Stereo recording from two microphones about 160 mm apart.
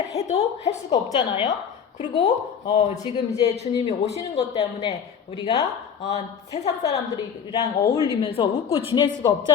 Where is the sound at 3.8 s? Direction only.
40° left (ahead or behind).